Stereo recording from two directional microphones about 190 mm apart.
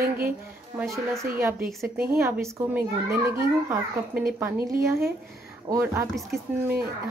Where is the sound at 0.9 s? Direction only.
15° right (ahead or behind).